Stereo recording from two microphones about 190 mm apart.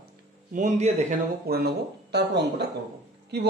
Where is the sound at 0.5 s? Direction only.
40° right (ahead or behind).